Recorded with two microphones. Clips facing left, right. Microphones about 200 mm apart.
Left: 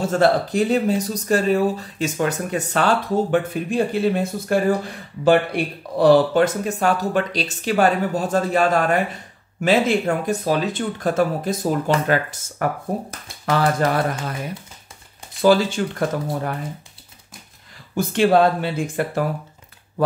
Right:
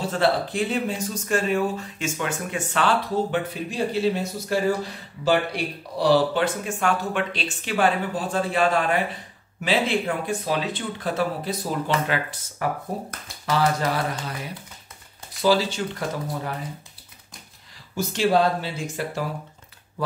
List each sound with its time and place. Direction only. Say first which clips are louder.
0.0 s speech: left 5 dB; 45° left (ahead or behind)
15.4 s speech: left 5 dB; 50° left (ahead or behind)
17.9 s speech: left 5 dB; 55° left (ahead or behind)